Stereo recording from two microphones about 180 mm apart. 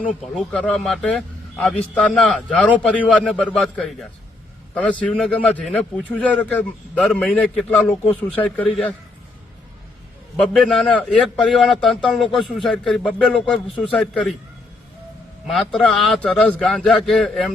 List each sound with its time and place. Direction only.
0.3 s a man's voice: 5° left (ahead or behind)
2.6 s a man's voice: 10° right (ahead or behind)
3.0 s a man's voice: 5° left (ahead or behind)
10.4 s speech: 5° left (ahead or behind)
15.4 s speech: centre (ahead or behind)